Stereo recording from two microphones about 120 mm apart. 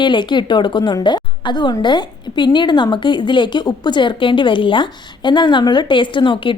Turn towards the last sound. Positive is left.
turn(degrees=45)  # may be behind; listen again after turning